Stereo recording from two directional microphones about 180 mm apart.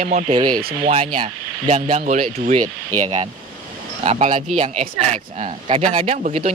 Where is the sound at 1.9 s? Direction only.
40° right (ahead or behind).